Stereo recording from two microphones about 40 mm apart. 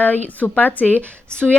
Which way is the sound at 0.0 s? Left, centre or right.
Left.